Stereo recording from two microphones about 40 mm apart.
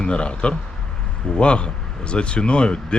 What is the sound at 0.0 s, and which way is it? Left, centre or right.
Speech, left.